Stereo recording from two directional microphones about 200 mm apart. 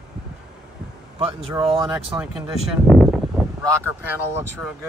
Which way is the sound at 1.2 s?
25° right (ahead or behind).